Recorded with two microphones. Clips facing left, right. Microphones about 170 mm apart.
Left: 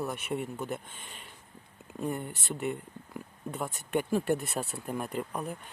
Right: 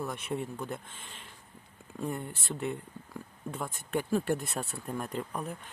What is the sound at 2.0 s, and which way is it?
Speech, centre (ahead or behind).